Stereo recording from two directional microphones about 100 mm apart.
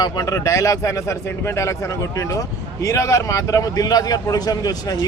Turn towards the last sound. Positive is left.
turn(degrees=40)  # may be behind; listen again after turning